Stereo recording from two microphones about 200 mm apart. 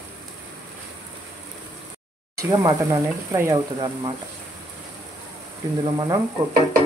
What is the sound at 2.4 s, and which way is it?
Speech, 15° right (ahead or behind).